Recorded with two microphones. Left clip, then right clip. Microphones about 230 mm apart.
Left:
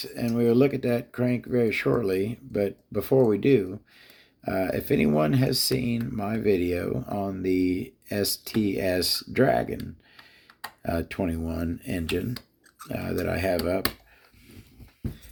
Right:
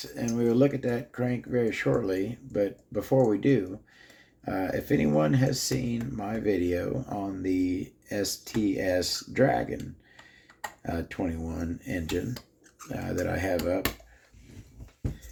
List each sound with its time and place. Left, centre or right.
0.0 s speech: left
10.8 s speech: left